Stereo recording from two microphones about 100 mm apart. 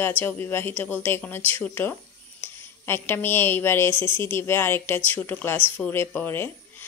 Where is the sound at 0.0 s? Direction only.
20° left (ahead or behind).